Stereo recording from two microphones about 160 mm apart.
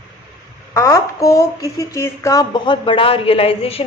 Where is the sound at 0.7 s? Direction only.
20° left (ahead or behind).